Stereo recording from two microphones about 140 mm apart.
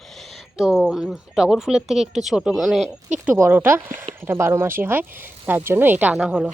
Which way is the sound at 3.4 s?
15° right (ahead or behind).